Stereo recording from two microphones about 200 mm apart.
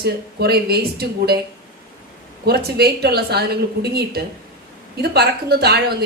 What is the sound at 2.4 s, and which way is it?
Speech, 50° right (ahead or behind).